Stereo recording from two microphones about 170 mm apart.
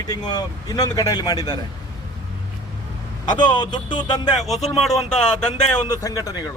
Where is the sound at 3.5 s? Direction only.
25° left (ahead or behind).